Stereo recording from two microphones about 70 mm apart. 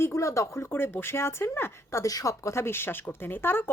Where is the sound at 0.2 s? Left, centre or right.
Left.